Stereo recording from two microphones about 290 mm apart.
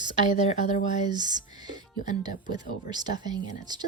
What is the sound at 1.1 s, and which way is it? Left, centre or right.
Speech, centre.